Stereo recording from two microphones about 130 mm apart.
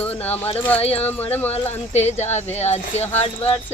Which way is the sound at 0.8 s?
50° left (ahead or behind).